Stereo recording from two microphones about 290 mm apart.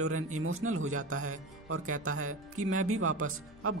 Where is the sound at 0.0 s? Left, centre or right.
Right.